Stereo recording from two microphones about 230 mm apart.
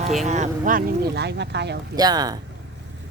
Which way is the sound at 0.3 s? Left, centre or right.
Right.